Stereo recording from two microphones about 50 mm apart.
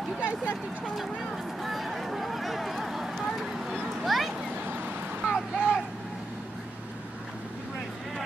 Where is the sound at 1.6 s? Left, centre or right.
Centre.